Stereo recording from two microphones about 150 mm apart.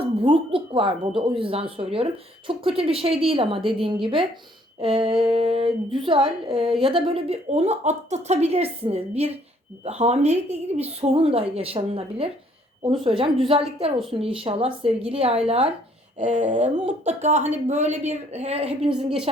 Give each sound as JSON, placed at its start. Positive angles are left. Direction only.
{"t": 0.0, "sound": "a woman's voice", "side_deg": -35}
{"t": 16.1, "sound": "a woman's voice", "side_deg": -55}
{"t": 18.8, "sound": "a woman's voice", "side_deg": -5}